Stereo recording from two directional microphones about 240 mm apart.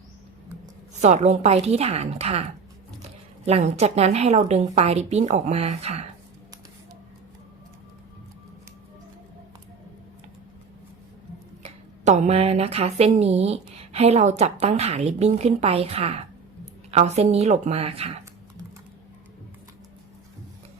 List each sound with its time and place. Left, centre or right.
1.0 s speech: right
3.4 s speech: right
11.6 s speech: right